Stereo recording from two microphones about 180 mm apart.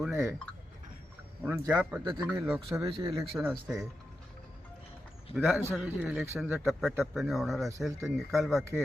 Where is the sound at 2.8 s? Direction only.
30° right (ahead or behind).